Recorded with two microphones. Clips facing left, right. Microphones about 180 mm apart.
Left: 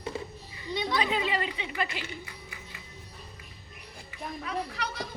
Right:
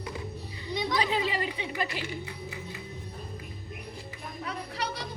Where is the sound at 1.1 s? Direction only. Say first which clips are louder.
Even; 35° right (ahead or behind).